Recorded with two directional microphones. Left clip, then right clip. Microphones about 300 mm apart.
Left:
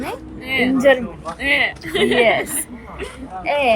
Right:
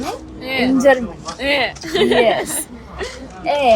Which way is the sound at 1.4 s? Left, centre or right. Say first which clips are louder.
Even; centre.